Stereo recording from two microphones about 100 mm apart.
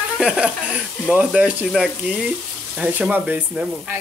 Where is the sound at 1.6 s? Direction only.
5° right (ahead or behind).